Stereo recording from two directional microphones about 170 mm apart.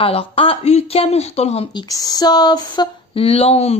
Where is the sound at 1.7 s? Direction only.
20° left (ahead or behind); by 3.8 s 35° left (ahead or behind).